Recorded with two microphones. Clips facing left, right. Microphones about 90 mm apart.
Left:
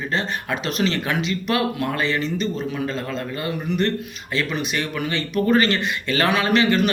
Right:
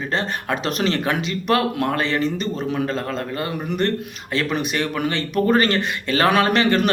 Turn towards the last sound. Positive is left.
turn(degrees=-50)  # may be behind; listen again after turning